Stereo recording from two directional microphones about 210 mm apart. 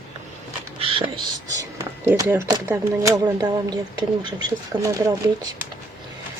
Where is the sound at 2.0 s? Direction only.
10° right (ahead or behind).